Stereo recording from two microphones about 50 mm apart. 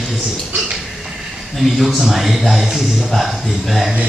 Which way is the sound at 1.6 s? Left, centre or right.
Centre.